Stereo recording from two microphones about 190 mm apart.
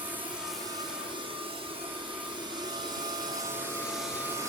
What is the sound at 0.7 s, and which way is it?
Vacuum cleaner, 25° right (ahead or behind).